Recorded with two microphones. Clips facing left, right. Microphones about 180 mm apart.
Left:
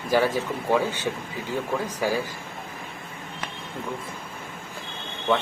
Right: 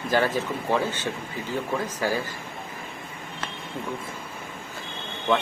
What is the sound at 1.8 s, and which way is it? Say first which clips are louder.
Speech: left 1 dB; 10° left (ahead or behind).